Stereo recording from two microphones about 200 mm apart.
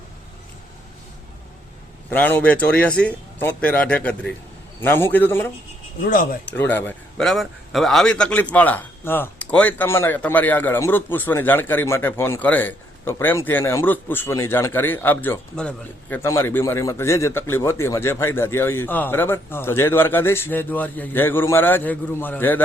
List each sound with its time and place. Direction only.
2.0 s a man's voice: 10° left (ahead or behind)
6.1 s speech: 45° left (ahead or behind)
6.5 s a man's voice: 10° left (ahead or behind)